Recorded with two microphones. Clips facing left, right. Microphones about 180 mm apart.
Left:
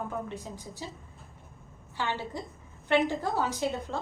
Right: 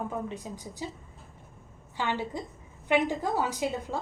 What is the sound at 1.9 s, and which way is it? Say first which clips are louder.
A woman's voice: right 2 dB; 15° right (ahead or behind).